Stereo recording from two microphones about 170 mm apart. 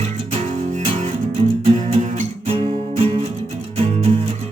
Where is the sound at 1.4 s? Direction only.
35° right (ahead or behind).